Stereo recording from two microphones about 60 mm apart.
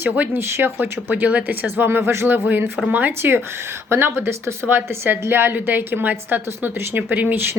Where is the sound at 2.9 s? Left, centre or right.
Right.